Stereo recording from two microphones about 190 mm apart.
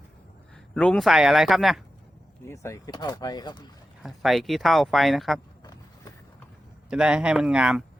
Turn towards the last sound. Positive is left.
turn(degrees=-5)  # may be behind; listen again after turning